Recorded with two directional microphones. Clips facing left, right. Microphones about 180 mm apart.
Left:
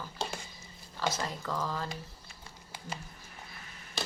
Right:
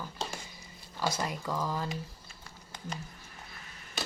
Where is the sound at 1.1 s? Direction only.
10° right (ahead or behind).